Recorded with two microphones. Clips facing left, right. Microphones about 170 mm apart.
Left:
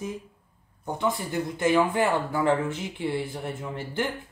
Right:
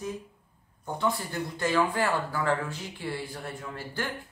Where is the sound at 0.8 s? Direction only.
20° left (ahead or behind).